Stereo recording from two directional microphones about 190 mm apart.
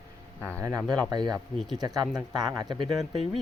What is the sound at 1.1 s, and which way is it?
Speech, 20° right (ahead or behind).